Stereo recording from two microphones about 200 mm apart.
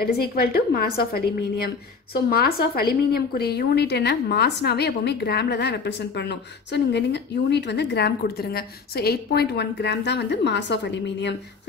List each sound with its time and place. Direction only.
0.0 s a woman's voice: 50° left (ahead or behind)